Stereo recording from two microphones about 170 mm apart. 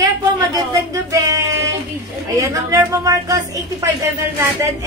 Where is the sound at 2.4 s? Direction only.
20° right (ahead or behind).